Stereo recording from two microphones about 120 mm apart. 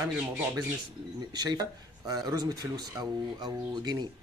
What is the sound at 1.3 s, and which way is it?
Speech, 35° right (ahead or behind).